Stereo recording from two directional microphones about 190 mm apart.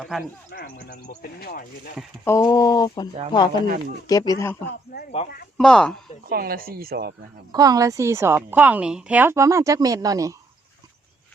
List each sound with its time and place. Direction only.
0.0 s speech: centre (ahead or behind)
0.5 s speech: 55° left (ahead or behind)
2.2 s speech: 15° left (ahead or behind)
4.7 s speech: 55° left (ahead or behind)
5.5 s speech: 5° left (ahead or behind)
6.2 s speech: 50° right (ahead or behind)
7.5 s speech: 20° right (ahead or behind)